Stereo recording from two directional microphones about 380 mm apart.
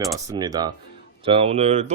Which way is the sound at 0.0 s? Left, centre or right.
Centre.